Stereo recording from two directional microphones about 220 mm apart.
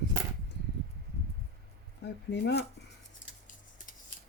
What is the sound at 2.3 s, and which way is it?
Speech, 50° left (ahead or behind).